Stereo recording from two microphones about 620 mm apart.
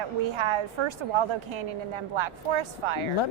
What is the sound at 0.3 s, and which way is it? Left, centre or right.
A woman's voice, right.